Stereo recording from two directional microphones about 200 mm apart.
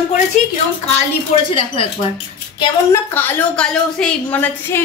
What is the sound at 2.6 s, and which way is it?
A woman's voice, 10° left (ahead or behind).